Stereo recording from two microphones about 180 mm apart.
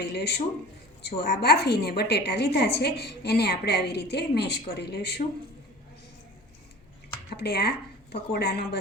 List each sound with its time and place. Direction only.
0.0 s a woman's voice: 65° left (ahead or behind)
7.3 s a woman's voice: 60° left (ahead or behind)